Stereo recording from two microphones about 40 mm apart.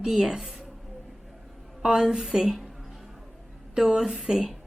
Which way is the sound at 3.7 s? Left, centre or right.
Centre.